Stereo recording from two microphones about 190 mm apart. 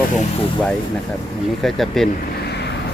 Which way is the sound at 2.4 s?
60° left (ahead or behind).